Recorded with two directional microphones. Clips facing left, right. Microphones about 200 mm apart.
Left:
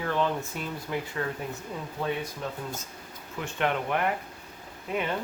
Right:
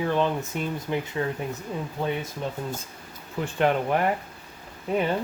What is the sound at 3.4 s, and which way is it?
Speech, 35° right (ahead or behind).